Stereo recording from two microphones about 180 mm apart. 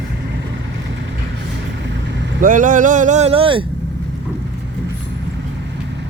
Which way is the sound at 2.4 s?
45° right (ahead or behind).